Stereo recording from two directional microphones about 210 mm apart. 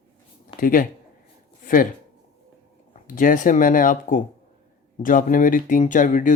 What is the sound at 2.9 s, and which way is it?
Speech, 40° left (ahead or behind).